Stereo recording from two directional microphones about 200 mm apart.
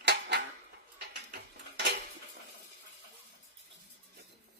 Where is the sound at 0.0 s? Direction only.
60° right (ahead or behind).